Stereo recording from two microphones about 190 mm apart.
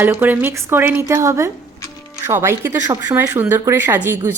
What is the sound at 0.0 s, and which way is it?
Speech, 10° right (ahead or behind).